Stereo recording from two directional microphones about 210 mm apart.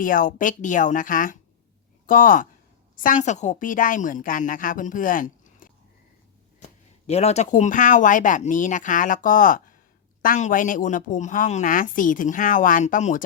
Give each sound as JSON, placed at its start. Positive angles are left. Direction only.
{"t": 0.0, "sound": "a woman's voice", "side_deg": 40}
{"t": 7.1, "sound": "a woman's voice", "side_deg": 30}